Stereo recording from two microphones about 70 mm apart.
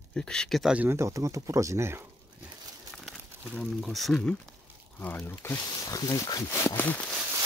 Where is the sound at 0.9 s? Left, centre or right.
Right.